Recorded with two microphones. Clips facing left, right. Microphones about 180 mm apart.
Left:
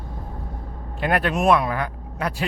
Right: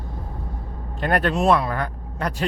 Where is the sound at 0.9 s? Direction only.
10° left (ahead or behind).